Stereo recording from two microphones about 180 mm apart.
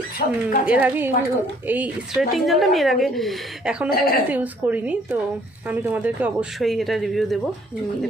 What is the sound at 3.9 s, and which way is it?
Speech, 55° left (ahead or behind).